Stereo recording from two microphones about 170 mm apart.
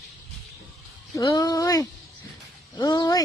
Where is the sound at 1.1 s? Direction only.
20° left (ahead or behind).